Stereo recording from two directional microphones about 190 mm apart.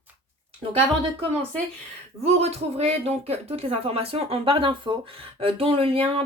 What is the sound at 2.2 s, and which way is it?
Speech, 35° right (ahead or behind).